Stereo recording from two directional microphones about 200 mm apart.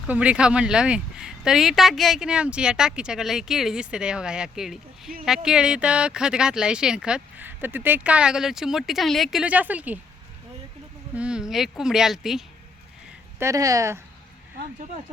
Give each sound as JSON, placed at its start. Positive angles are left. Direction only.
{"t": 0.1, "sound": "speech", "side_deg": -5}
{"t": 11.1, "sound": "speech", "side_deg": -5}
{"t": 13.4, "sound": "speech", "side_deg": -15}